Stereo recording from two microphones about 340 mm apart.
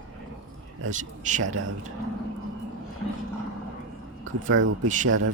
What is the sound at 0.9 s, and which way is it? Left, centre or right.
Speech, right.